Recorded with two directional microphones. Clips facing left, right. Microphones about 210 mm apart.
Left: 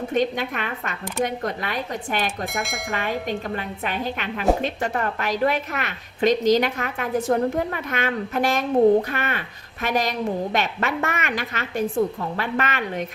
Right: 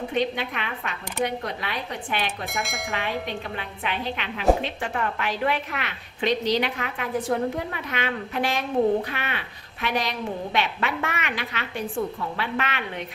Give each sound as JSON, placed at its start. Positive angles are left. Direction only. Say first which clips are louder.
{"t": 0.1, "sound": "a woman's voice", "louder": "left 4 dB", "side_deg": 45}
{"t": 2.5, "sound": "speech", "louder": "left 2 dB", "side_deg": 0}
{"t": 3.1, "sound": "a woman's voice", "louder": "left 4 dB", "side_deg": 45}